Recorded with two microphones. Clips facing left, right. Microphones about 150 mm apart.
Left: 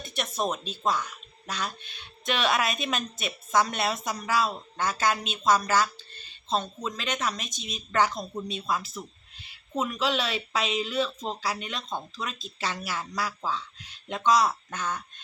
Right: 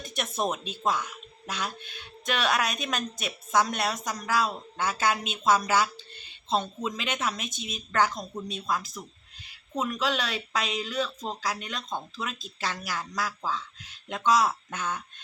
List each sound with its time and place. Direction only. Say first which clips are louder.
0.2 s a woman's voice: even; 10° right (ahead or behind)
7.4 s a woman's voice: right 2 dB; 55° right (ahead or behind)
7.9 s a woman's voice: left 1 dB; centre (ahead or behind)